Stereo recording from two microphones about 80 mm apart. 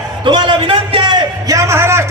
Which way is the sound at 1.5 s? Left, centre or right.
Right.